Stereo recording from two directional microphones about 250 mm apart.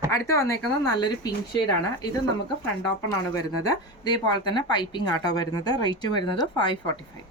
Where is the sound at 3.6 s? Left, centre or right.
Centre.